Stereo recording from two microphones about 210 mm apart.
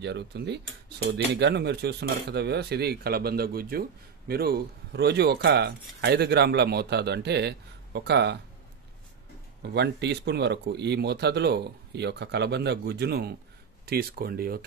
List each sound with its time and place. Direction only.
0.0 s cutlery: 55° right (ahead or behind)
9.6 s cutlery: 55° right (ahead or behind)